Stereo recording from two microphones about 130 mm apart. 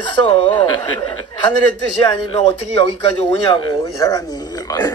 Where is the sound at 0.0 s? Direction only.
35° left (ahead or behind).